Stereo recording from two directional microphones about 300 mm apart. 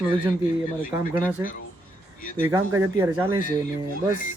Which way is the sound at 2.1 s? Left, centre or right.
Left.